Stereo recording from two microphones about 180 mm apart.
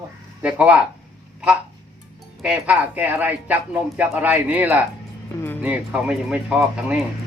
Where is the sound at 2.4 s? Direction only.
10° right (ahead or behind).